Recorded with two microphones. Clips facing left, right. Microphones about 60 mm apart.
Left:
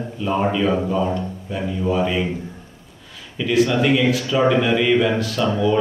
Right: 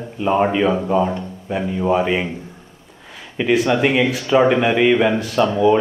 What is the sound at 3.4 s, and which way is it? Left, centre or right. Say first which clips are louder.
A man's voice: right 2 dB; right.